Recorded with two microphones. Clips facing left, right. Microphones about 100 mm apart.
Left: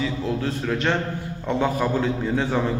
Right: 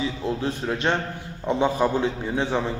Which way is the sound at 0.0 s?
25° right (ahead or behind).